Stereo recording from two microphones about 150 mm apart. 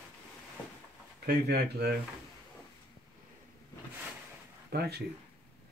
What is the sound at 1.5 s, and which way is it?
Speech, 90° right.